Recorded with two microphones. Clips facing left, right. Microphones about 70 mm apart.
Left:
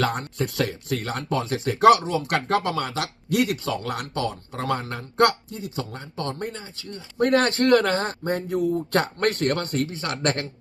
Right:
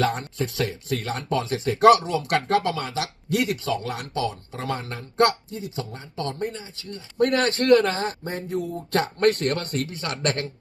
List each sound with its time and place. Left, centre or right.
0.0 s speech: left